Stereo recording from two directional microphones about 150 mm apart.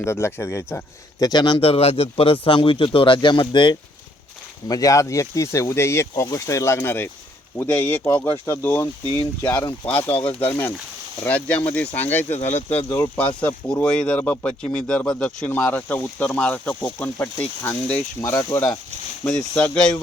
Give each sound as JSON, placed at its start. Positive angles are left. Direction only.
{"t": 0.0, "sound": "speech", "side_deg": 20}
{"t": 1.2, "sound": "a man's voice", "side_deg": 30}
{"t": 4.7, "sound": "speech", "side_deg": 20}